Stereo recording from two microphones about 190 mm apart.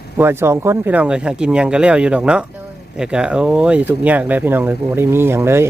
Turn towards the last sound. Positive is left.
turn(degrees=-15)  # may be behind; listen again after turning